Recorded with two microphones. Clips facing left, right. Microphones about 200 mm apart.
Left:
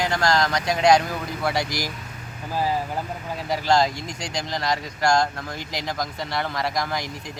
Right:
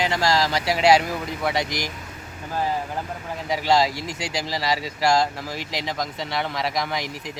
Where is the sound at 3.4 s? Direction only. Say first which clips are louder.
Even; centre (ahead or behind).